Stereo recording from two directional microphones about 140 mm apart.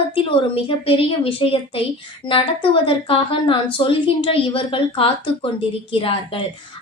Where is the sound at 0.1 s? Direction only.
40° left (ahead or behind).